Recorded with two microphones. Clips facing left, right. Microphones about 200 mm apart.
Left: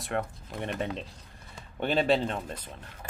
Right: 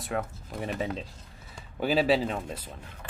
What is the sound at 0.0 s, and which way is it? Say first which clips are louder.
Speech: even; 5° right (ahead or behind).